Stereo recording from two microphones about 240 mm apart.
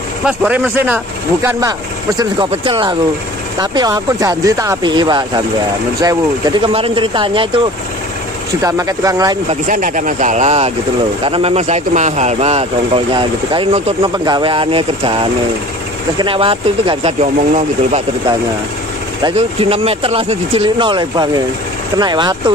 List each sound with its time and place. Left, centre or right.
0.2 s speech: centre; by 7.6 s right
8.6 s speech: centre
9.5 s speech: right
16.2 s speech: right
19.2 s speech: right